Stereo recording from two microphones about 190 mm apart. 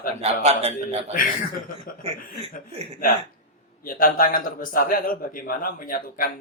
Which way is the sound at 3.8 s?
50° left (ahead or behind).